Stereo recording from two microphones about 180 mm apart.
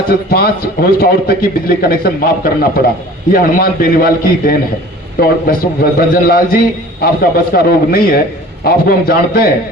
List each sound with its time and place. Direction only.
0.1 s a man's voice: 60° left (ahead or behind)